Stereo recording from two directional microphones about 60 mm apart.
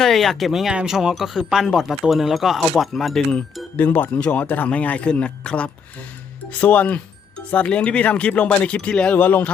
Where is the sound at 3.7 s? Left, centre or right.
Left.